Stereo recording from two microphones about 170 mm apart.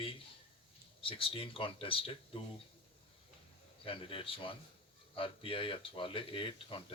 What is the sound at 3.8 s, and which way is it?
Speech, 30° left (ahead or behind).